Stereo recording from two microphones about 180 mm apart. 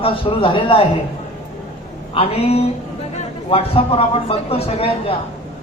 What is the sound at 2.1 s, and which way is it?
A man's voice, 30° left (ahead or behind).